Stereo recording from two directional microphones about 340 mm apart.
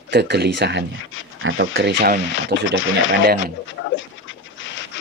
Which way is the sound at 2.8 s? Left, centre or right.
Left.